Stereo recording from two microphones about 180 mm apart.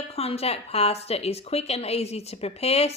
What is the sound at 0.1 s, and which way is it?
Speech, 35° left (ahead or behind).